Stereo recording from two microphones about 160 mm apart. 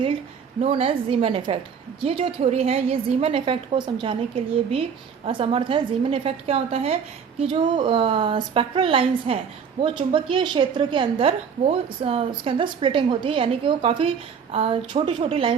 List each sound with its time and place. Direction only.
0.6 s a woman's voice: 40° right (ahead or behind)